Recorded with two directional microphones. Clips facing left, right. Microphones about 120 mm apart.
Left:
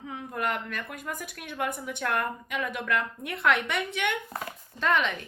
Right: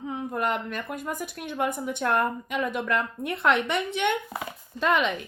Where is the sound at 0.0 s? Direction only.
25° right (ahead or behind).